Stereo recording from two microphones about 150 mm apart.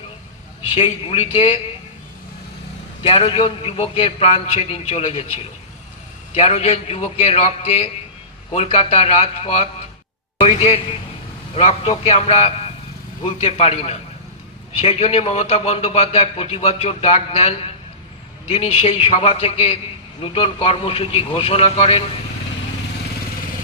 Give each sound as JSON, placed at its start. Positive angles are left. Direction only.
{"t": 0.8, "sound": "a man's voice", "side_deg": 45}
{"t": 3.1, "sound": "a man's voice", "side_deg": 40}